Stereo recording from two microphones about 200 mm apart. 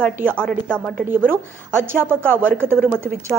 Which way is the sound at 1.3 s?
10° right (ahead or behind).